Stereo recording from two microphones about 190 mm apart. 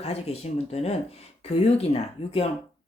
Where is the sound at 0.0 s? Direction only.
35° left (ahead or behind).